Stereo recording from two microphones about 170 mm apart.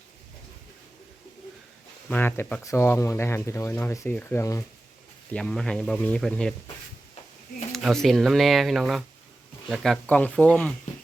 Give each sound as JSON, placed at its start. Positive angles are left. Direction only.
{"t": 2.0, "sound": "speech", "side_deg": 10}
{"t": 5.3, "sound": "speech", "side_deg": 5}
{"t": 7.7, "sound": "speech", "side_deg": 0}